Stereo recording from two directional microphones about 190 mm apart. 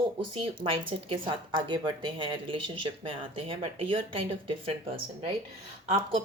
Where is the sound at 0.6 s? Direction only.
30° right (ahead or behind).